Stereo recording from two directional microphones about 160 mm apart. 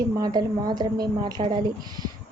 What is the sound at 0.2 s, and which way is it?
Speech, 25° right (ahead or behind).